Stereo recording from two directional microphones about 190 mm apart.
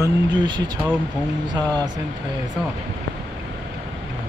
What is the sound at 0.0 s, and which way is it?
Speech, 25° right (ahead or behind).